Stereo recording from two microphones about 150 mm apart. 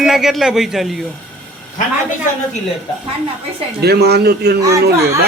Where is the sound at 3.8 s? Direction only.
90° right.